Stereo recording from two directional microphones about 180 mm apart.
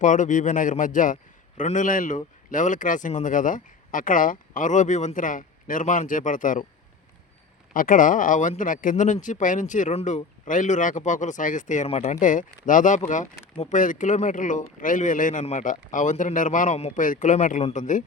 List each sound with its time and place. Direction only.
0.0 s a man's voice: 45° left (ahead or behind)
7.7 s a man's voice: 50° left (ahead or behind)